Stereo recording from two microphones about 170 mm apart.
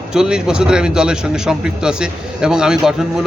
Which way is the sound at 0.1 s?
5° right (ahead or behind).